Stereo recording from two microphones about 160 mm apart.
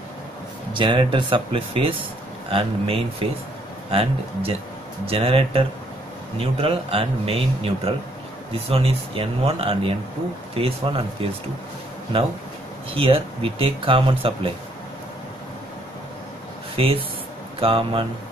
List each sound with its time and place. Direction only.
0.7 s speech: 30° right (ahead or behind)
12.9 s speech: 35° right (ahead or behind)
16.7 s speech: 35° right (ahead or behind)